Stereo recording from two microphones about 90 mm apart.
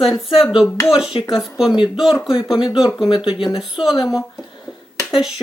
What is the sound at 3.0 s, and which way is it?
Speech, 65° left (ahead or behind).